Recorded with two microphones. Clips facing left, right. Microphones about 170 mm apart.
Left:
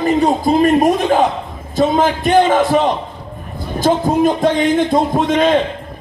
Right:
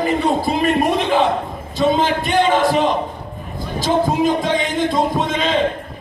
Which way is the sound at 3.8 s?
50° left (ahead or behind).